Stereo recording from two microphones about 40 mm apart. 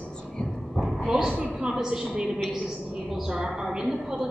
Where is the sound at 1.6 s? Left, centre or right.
Centre.